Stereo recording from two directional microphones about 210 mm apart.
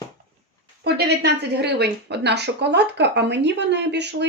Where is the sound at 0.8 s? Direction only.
50° right (ahead or behind).